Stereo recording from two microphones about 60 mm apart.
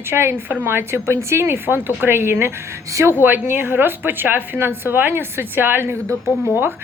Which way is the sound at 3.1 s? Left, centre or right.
Right.